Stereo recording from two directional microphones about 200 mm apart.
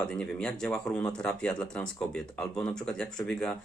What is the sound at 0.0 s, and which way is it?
Speech, 5° left (ahead or behind).